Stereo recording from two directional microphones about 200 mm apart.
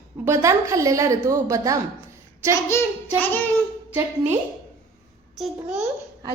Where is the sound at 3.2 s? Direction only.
10° left (ahead or behind).